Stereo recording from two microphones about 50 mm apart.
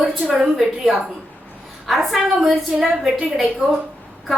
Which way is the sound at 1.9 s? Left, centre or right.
Centre.